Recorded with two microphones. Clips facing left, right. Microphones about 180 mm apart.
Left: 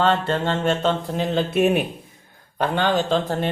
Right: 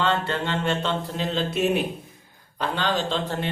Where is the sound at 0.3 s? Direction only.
45° left (ahead or behind).